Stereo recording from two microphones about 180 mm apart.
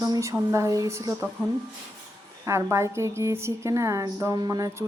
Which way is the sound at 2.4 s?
15° right (ahead or behind).